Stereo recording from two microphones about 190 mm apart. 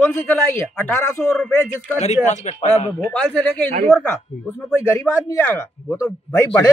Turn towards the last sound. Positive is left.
turn(degrees=15)  # may be behind; listen again after turning